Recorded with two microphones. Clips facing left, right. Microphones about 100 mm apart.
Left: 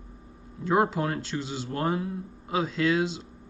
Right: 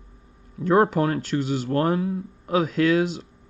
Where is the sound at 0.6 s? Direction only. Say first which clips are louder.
Right 5 dB; 55° right (ahead or behind).